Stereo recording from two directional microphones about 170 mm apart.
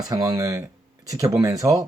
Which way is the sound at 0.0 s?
20° right (ahead or behind).